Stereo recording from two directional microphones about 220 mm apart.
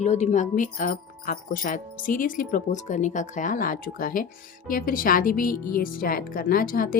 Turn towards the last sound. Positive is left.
turn(degrees=40)  # may be behind; listen again after turning